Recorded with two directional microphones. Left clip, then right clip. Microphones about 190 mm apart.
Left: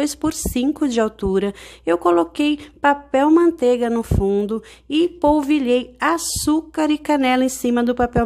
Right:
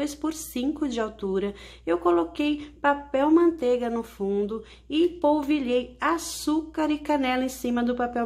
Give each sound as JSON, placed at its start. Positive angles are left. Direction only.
{"t": 0.0, "sound": "a woman's voice", "side_deg": 45}